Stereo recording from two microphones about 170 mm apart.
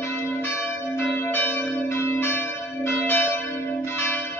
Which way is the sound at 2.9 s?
10° left (ahead or behind).